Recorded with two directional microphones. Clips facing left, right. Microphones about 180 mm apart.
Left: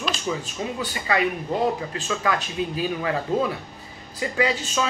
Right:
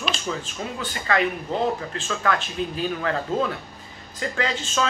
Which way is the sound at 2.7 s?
10° left (ahead or behind).